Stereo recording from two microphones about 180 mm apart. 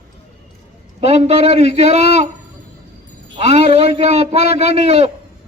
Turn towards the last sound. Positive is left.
turn(degrees=-35)  # may be behind; listen again after turning